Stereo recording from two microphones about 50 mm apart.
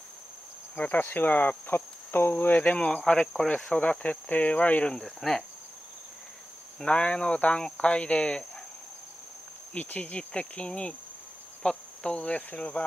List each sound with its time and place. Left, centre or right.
0.7 s cricket: left
4.8 s speech: centre
6.8 s cricket: left
9.8 s cricket: left